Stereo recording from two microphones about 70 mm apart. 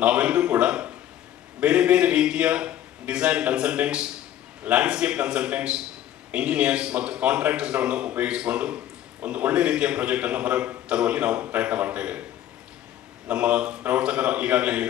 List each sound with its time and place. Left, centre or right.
0.0 s a man's voice: centre
13.3 s speech: centre